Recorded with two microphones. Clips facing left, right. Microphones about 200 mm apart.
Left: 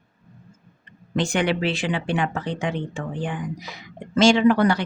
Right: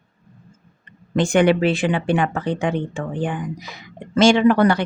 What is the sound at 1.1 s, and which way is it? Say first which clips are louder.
Speech: right 6 dB; 50° right (ahead or behind).